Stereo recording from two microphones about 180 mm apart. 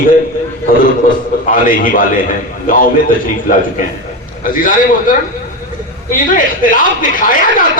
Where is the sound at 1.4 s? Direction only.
50° left (ahead or behind).